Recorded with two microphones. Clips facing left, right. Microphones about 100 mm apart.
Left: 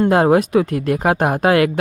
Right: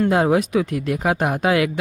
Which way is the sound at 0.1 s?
50° left (ahead or behind).